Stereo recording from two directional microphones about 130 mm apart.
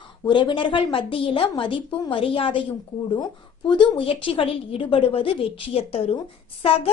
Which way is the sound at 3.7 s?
40° left (ahead or behind).